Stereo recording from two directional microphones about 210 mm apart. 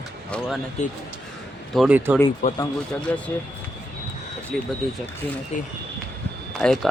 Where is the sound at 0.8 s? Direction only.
35° left (ahead or behind).